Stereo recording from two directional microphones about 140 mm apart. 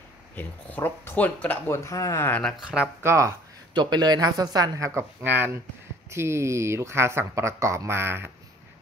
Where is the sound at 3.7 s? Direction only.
30° right (ahead or behind).